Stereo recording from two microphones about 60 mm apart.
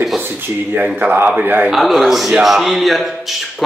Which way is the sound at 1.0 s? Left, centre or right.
Right.